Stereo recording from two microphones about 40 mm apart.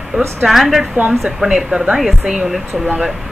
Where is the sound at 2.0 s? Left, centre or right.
Centre.